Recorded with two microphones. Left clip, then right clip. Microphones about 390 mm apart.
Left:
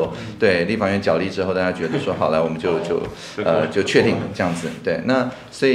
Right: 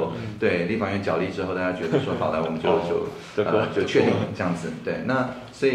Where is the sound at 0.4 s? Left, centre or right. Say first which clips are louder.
Left 6 dB; left.